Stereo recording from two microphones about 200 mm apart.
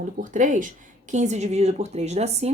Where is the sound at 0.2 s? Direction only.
40° right (ahead or behind).